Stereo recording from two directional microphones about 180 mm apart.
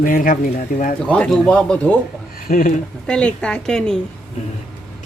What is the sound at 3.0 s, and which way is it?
Speech, 5° left (ahead or behind).